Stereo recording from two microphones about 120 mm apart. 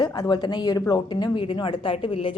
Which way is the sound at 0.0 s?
35° left (ahead or behind).